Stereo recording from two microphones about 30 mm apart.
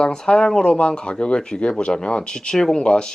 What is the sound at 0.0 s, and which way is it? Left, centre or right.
Speech, left.